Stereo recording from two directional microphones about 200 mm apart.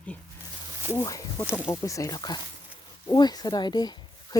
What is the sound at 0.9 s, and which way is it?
Speech, 15° left (ahead or behind).